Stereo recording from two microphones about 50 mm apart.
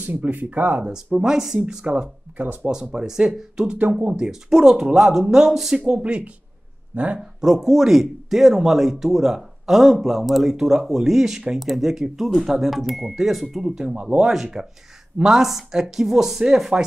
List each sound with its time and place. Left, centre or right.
0.0 s speech: right
0.8 s speech: centre
1.9 s speech: right
2.7 s speech: centre
7.2 s speech: centre